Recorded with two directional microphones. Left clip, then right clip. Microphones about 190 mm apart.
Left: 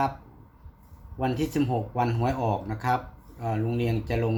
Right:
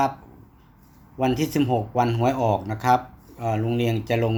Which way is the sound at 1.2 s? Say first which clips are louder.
Right 4 dB; 35° right (ahead or behind).